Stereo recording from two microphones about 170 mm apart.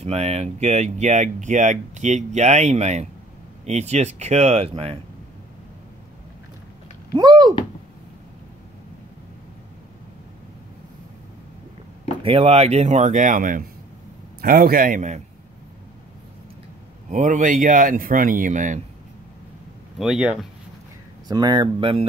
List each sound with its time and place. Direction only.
0.0 s speech: 35° right (ahead or behind)
7.1 s speech: 25° right (ahead or behind)
12.2 s speech: 35° right (ahead or behind)
17.1 s speech: 50° right (ahead or behind)
20.0 s speech: 5° right (ahead or behind)
21.3 s speech: 25° right (ahead or behind)